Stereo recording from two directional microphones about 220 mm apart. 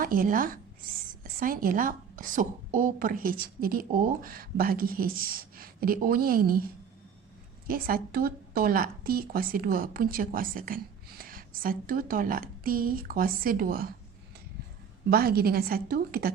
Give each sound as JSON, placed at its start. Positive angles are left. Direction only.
{"t": 0.0, "sound": "a woman's voice", "side_deg": -40}
{"t": 7.7, "sound": "a woman's voice", "side_deg": -40}
{"t": 15.1, "sound": "a woman's voice", "side_deg": -45}